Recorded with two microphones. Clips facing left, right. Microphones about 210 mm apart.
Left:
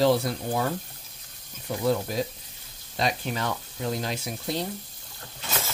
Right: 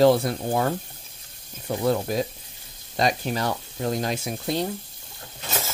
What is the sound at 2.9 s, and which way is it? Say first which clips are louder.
Speech: right 4 dB; 40° right (ahead or behind).